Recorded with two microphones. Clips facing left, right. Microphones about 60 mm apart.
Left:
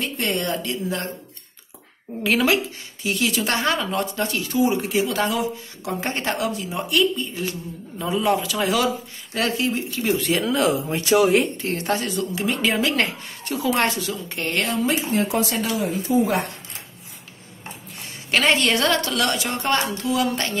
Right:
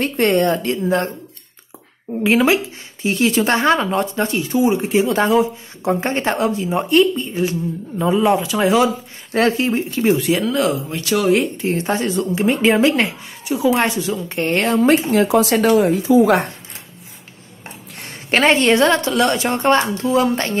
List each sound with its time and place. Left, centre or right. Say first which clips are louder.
0.0 s speech: right 9 dB; right
2.2 s speech: right 5 dB; right
10.1 s speech: right 4 dB; centre
10.9 s speech: left 1 dB; left
11.2 s speech: right 3 dB; centre
11.7 s speech: right 6 dB; right
12.9 s speech: right 3 dB; centre; by 14.9 s right
15.0 s speech: right 7 dB; right
17.9 s a sound: right 3 dB; right
18.3 s speech: right 5 dB; right